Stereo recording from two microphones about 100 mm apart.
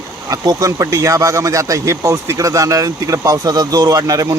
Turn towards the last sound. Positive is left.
turn(degrees=-35)  # may be behind; listen again after turning